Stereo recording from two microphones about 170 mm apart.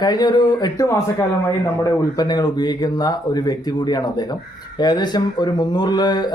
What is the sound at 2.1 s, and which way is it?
Speech, 25° left (ahead or behind).